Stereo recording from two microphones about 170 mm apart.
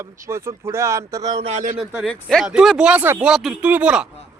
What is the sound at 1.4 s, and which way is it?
Speech, 45° right (ahead or behind).